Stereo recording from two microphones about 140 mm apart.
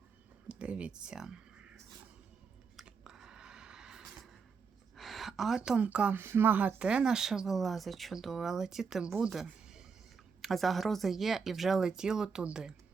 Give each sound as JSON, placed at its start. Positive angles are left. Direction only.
{"t": 0.4, "sound": "a sound", "side_deg": -10}
{"t": 2.7, "sound": "chewing", "side_deg": -5}
{"t": 4.9, "sound": "a woman's voice", "side_deg": 0}